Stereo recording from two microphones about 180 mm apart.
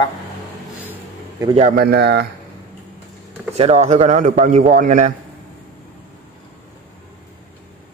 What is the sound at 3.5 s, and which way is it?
A man's voice, 35° right (ahead or behind).